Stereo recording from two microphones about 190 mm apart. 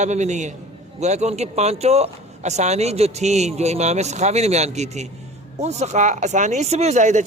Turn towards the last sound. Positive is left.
turn(degrees=-40)  # may be behind; listen again after turning